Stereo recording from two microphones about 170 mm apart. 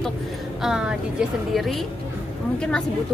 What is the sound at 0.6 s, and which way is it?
Speech, 5° right (ahead or behind).